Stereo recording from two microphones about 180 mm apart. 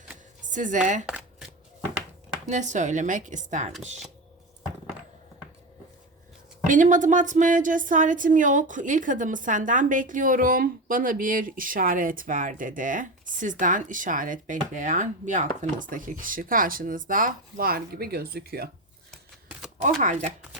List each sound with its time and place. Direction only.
0.4 s speech: 45° right (ahead or behind)
1.0 s shuffling cards: 5° right (ahead or behind)
2.5 s speech: 40° right (ahead or behind)
6.7 s speech: 45° right (ahead or behind)
20.0 s speech: 45° right (ahead or behind)